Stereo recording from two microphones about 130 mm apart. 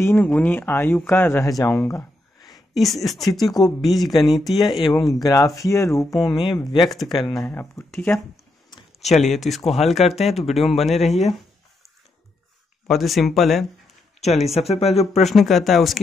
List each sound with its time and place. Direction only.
0.0 s speech: 15° left (ahead or behind)
2.7 s speech: centre (ahead or behind)
3.4 s speech: 30° left (ahead or behind)
3.8 s speech: centre (ahead or behind)
4.9 s speech: 25° left (ahead or behind)
6.0 s speech: centre (ahead or behind)
6.5 s speech: 35° left (ahead or behind)
6.9 s speech: centre (ahead or behind)
7.2 s speech: 25° left (ahead or behind)
7.4 s speech: 15° left (ahead or behind)
9.0 s speech: centre (ahead or behind)
12.8 s speech: centre (ahead or behind)
14.2 s speech: 55° left (ahead or behind)
15.2 s speech: centre (ahead or behind)